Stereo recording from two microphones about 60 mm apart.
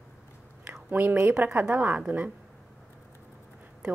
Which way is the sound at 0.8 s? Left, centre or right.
Right.